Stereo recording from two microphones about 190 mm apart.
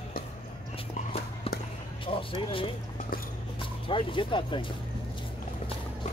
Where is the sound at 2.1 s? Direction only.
25° left (ahead or behind).